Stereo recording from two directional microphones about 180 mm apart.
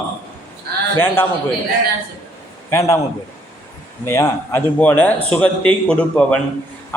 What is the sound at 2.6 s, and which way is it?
Speech, 15° left (ahead or behind).